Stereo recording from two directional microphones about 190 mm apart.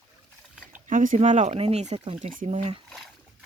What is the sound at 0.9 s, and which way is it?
Speech, 45° right (ahead or behind).